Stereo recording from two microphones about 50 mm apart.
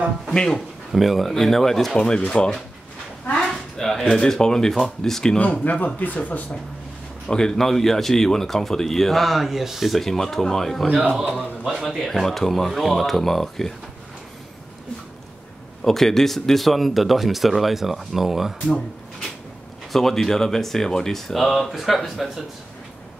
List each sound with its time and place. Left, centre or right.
0.3 s speech: centre
0.9 s speech: centre
2.0 s speech: centre
3.3 s speech: centre
5.4 s speech: left
7.2 s speech: centre
10.9 s speech: centre
15.8 s speech: centre
19.9 s speech: centre